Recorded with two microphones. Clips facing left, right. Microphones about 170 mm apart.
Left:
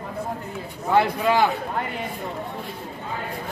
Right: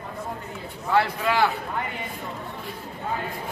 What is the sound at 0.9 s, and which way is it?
Speech, 20° left (ahead or behind).